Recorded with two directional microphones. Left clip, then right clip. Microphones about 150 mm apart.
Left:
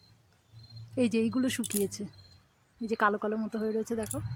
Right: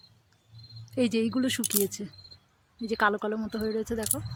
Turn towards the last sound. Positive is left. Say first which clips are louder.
# right 2 dB
turn(degrees=-10)  # may be behind; listen again after turning